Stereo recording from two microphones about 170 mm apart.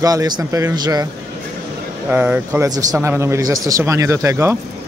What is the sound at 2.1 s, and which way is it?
A man's voice, 10° right (ahead or behind).